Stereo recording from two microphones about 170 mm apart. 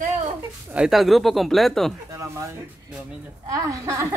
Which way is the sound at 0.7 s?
5° right (ahead or behind).